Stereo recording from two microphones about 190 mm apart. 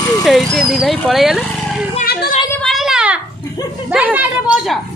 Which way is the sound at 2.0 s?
55° left (ahead or behind).